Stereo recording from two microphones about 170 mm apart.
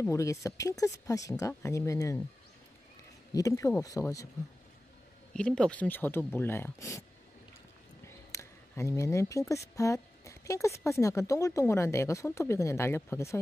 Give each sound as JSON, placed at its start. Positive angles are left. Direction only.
{"t": 0.0, "sound": "speech", "side_deg": 15}
{"t": 3.3, "sound": "speech", "side_deg": 20}
{"t": 5.3, "sound": "speech", "side_deg": 5}